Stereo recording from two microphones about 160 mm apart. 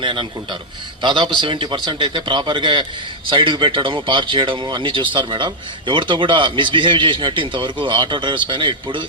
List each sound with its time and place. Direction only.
0.0 s a man's voice: 30° right (ahead or behind)